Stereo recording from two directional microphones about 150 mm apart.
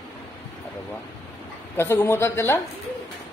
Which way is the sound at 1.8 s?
15° left (ahead or behind).